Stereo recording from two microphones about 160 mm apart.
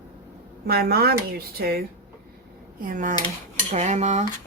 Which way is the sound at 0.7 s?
75° right (ahead or behind).